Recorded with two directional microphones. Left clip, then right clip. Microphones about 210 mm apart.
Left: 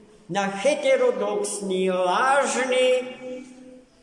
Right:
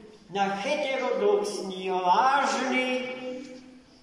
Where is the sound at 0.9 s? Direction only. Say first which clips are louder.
Left 4 dB; centre (ahead or behind).